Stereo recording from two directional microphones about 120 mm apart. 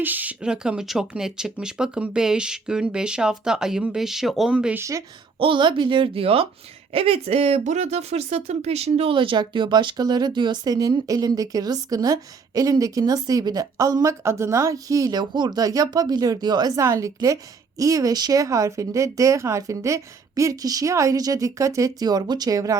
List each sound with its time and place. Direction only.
0.0 s speech: 15° right (ahead or behind)
4.8 s speech: 25° right (ahead or behind)
5.4 s a woman's voice: 45° right (ahead or behind); by 22.8 s 30° right (ahead or behind)